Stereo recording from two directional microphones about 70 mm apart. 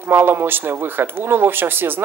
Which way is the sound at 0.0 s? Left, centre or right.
Right.